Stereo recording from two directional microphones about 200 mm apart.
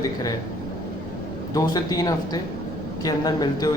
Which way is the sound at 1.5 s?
20° left (ahead or behind).